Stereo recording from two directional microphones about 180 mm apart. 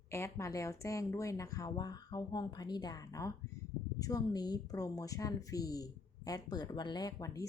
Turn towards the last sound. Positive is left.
turn(degrees=20)  # may be behind; listen again after turning